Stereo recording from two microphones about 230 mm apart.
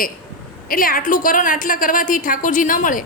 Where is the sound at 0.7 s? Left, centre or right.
Left.